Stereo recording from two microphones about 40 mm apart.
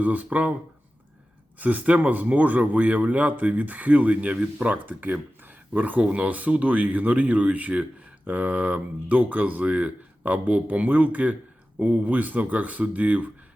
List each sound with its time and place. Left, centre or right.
0.0 s speech: right
1.5 s speech: right